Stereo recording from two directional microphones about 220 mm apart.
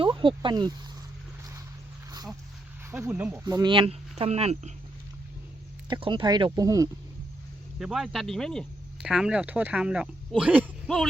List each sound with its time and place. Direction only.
0.0 s speech: 25° right (ahead or behind)
2.9 s speech: 5° right (ahead or behind); by 4.7 s 30° right (ahead or behind)
5.9 s speech: 20° right (ahead or behind)
7.8 s speech: centre (ahead or behind)